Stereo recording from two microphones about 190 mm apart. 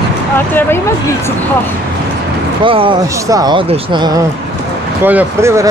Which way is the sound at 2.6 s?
30° right (ahead or behind).